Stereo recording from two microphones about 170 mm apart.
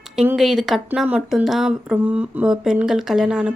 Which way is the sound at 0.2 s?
5° right (ahead or behind).